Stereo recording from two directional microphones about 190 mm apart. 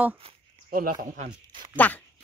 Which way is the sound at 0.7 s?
50° right (ahead or behind).